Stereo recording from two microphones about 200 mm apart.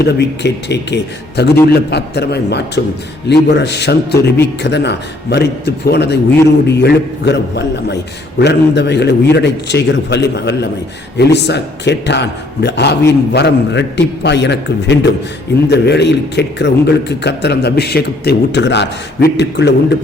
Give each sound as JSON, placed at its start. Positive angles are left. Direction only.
{"t": 0.0, "sound": "a man's voice", "side_deg": 55}